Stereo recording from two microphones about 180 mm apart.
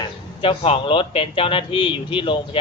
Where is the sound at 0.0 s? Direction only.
30° left (ahead or behind).